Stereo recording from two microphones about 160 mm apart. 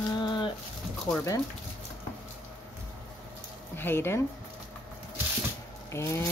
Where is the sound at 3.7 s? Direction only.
15° left (ahead or behind).